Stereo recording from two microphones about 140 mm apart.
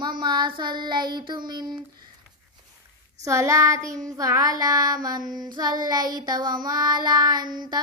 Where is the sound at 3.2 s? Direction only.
20° right (ahead or behind).